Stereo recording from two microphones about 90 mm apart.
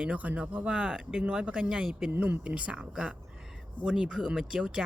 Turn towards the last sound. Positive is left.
turn(degrees=-5)  # may be behind; listen again after turning